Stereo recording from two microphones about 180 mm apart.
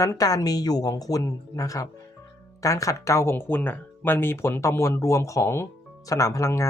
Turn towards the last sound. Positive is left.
turn(degrees=15)  # may be behind; listen again after turning